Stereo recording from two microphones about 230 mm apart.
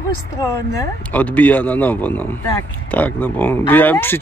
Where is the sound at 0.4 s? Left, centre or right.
Centre.